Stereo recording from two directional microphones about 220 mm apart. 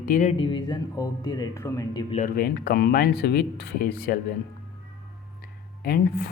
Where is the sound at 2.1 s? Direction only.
35° left (ahead or behind).